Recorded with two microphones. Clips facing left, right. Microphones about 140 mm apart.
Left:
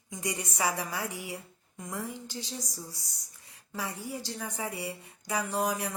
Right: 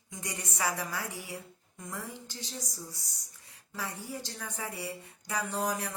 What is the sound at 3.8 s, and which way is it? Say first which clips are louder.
Speech: left 2 dB; 10° left (ahead or behind).